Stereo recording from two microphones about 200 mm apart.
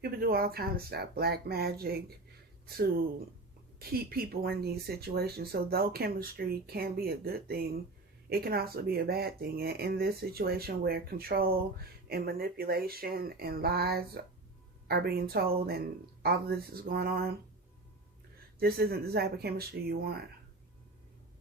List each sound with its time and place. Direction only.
0.0 s speech: 50° right (ahead or behind)
3.8 s speech: 50° right (ahead or behind)
18.6 s speech: 50° right (ahead or behind)